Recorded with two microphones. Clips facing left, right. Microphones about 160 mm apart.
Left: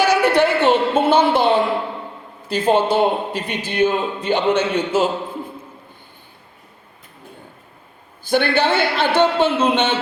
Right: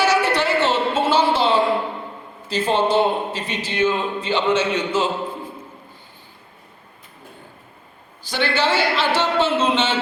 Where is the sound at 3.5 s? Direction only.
50° left (ahead or behind).